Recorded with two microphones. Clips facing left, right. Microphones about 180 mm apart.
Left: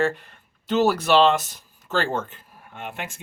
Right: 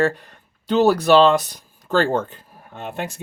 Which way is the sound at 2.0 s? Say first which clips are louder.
Right 6 dB; 55° right (ahead or behind).